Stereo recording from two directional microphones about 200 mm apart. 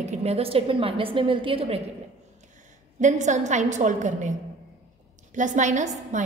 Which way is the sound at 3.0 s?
35° right (ahead or behind).